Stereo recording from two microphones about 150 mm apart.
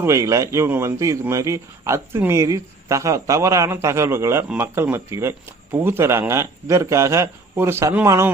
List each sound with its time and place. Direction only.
0.0 s speech: 20° right (ahead or behind)